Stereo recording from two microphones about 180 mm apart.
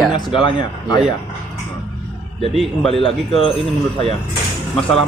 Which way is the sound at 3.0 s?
30° left (ahead or behind).